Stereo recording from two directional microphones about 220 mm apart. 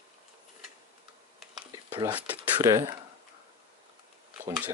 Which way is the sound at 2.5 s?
15° right (ahead or behind).